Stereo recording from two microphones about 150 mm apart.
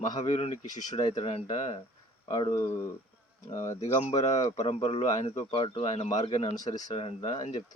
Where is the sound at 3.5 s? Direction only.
50° left (ahead or behind).